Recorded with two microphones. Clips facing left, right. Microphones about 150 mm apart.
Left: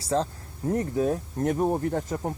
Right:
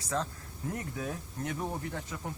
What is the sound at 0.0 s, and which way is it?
Speech, 30° left (ahead or behind).